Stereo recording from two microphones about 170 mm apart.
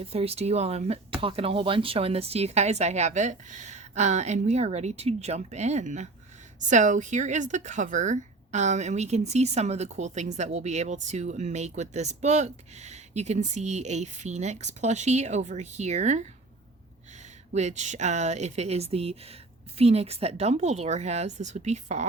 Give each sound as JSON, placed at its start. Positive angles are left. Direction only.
{"t": 0.0, "sound": "speech", "side_deg": -35}
{"t": 17.5, "sound": "speech", "side_deg": -40}